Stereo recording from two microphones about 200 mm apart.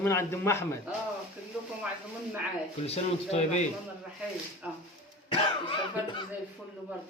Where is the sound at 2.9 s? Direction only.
35° left (ahead or behind).